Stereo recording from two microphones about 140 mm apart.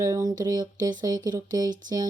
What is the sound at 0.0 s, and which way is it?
Speech, 20° right (ahead or behind).